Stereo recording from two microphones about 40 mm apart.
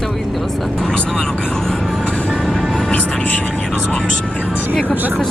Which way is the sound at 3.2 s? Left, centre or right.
Left.